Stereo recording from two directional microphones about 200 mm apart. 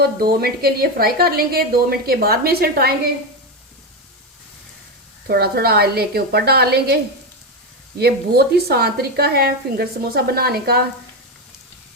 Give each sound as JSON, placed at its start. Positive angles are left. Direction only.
{"t": 0.2, "sound": "a woman's voice", "side_deg": -50}
{"t": 5.3, "sound": "a woman's voice", "side_deg": -50}